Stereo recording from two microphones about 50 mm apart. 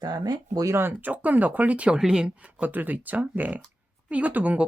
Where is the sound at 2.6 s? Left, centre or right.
Right.